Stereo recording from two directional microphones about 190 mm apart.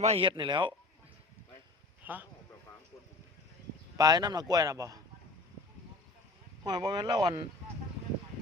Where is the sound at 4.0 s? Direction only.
20° right (ahead or behind).